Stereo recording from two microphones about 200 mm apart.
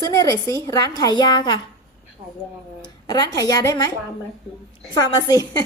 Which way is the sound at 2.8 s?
20° left (ahead or behind).